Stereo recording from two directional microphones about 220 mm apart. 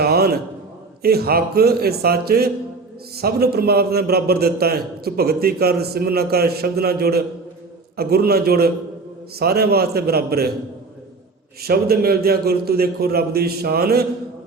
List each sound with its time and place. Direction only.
0.0 s a sound: 45° right (ahead or behind)
1.0 s a man's voice: 45° right (ahead or behind)
11.6 s a man's voice: 45° right (ahead or behind)